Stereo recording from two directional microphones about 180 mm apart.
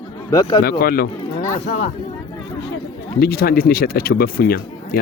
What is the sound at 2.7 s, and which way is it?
Speech, 60° left (ahead or behind).